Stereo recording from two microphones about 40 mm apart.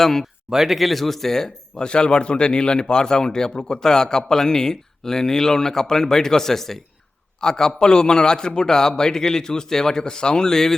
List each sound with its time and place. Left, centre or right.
0.0 s speech: centre
0.5 s speech: centre
1.8 s speech: left